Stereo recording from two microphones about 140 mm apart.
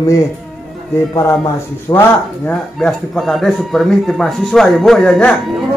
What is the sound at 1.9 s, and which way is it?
Speech, 25° left (ahead or behind).